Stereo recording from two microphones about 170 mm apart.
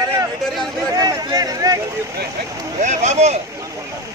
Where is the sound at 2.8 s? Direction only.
45° right (ahead or behind).